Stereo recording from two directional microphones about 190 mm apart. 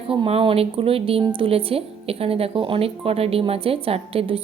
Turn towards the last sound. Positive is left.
turn(degrees=-30)  # may be behind; listen again after turning